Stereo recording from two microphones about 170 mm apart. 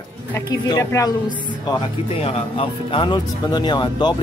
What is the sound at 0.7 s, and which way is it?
Speech, 20° left (ahead or behind).